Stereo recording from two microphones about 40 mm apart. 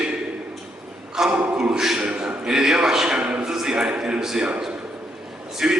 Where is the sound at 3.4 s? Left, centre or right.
Centre.